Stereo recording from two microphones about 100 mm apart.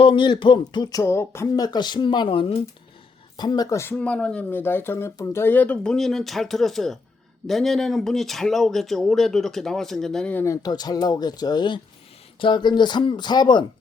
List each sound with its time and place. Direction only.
0.0 s speech: 55° left (ahead or behind)
1.0 s speech: 25° left (ahead or behind)
1.5 s speech: 40° left (ahead or behind)
3.3 s speech: 45° left (ahead or behind)
3.7 s speech: 25° left (ahead or behind)
3.9 s speech: 10° left (ahead or behind)
10.3 s speech: 30° left (ahead or behind)
10.6 s speech: 40° left (ahead or behind)